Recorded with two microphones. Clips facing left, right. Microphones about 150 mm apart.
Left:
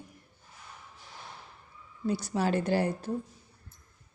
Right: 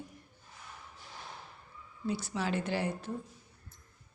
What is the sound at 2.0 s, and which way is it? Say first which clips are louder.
Speech: left 5 dB; 40° left (ahead or behind).